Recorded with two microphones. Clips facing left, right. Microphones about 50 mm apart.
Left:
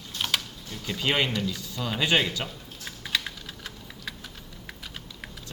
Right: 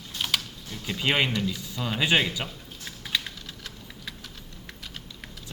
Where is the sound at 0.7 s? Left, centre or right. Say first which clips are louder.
Right 1 dB; centre.